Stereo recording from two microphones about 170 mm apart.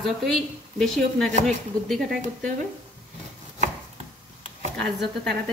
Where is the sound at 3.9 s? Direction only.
45° right (ahead or behind).